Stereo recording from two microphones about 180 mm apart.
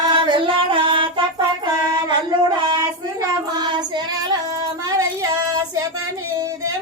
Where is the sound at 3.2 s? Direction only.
25° right (ahead or behind).